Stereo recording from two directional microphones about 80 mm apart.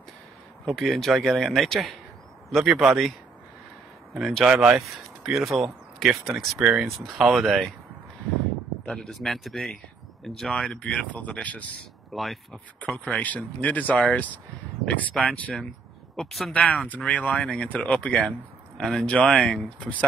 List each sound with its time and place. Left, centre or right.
0.7 s speech: centre
4.5 s speech: centre
6.9 s speech: centre
8.9 s speech: centre
12.1 s speech: centre
13.2 s speech: centre
16.2 s speech: centre
16.5 s speech: centre